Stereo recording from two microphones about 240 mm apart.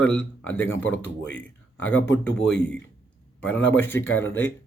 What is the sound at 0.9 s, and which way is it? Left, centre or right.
Speech, left.